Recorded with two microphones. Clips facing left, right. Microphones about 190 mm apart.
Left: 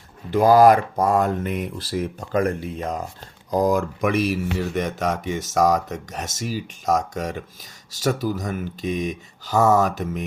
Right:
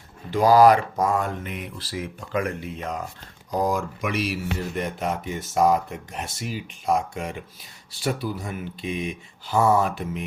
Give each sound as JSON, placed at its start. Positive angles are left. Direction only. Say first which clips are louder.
{"t": 0.3, "sound": "speech", "louder": "left 2 dB", "side_deg": 50}
{"t": 4.7, "sound": "speech", "louder": "left 3 dB", "side_deg": 85}
{"t": 5.7, "sound": "speech", "louder": "left 1 dB", "side_deg": 40}